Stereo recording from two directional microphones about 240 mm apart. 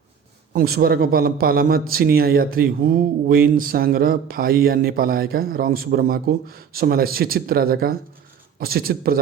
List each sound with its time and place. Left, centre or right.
0.5 s a man's voice: right